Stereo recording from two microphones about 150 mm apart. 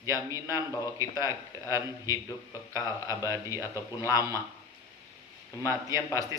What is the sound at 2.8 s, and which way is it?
A man's voice, 20° right (ahead or behind).